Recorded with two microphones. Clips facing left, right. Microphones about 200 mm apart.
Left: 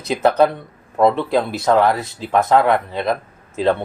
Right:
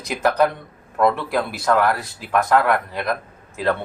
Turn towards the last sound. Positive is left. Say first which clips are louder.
# left 4 dB
turn(degrees=25)  # may be behind; listen again after turning